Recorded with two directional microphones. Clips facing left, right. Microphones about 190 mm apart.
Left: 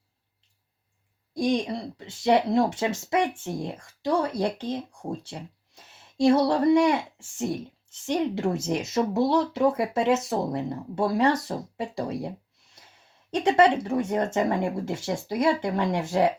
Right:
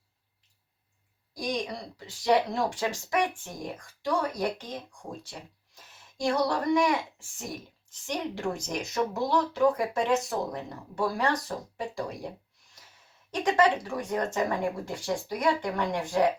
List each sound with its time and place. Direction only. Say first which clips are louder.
1.3 s speech: left 7 dB; 25° left (ahead or behind)
13.3 s speech: left 4 dB; 25° left (ahead or behind)